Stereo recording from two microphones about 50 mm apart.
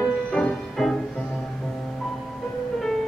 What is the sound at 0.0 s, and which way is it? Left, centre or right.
Music, centre.